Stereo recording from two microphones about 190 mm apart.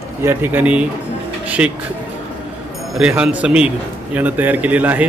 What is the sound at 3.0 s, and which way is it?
A man's voice, 5° right (ahead or behind).